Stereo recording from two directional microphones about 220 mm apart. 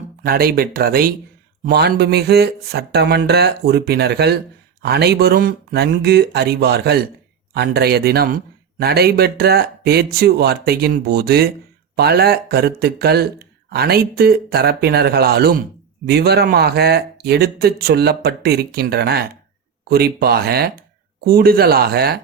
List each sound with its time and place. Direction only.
0.3 s speech: 45° right (ahead or behind)